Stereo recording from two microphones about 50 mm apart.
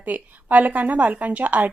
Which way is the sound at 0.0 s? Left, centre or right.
Right.